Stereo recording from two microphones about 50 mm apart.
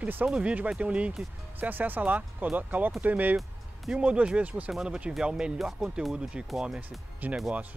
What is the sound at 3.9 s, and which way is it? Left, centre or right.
Speech, centre.